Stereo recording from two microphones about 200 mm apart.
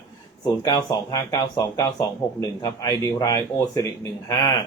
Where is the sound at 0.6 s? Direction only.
20° left (ahead or behind).